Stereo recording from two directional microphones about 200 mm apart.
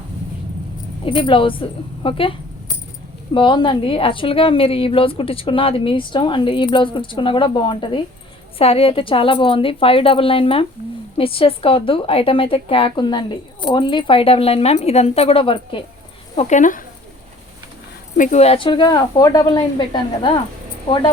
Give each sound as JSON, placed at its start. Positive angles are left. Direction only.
{"t": 1.0, "sound": "a woman's voice", "side_deg": 25}
{"t": 3.3, "sound": "a woman's voice", "side_deg": 25}
{"t": 18.2, "sound": "a woman's voice", "side_deg": 35}